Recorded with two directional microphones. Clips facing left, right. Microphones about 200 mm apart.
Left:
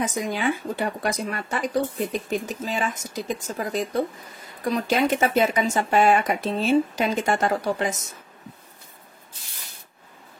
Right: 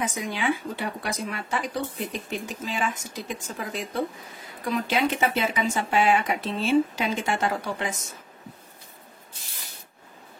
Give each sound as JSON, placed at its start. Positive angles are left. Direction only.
{"t": 0.0, "sound": "speech", "side_deg": 45}